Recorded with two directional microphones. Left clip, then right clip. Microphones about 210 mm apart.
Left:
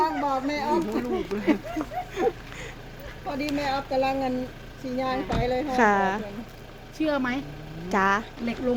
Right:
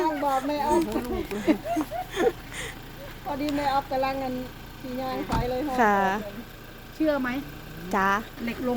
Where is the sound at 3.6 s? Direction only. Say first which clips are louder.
Even; 55° left (ahead or behind).